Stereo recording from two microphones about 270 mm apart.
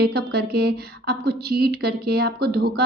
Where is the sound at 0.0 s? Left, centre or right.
Right.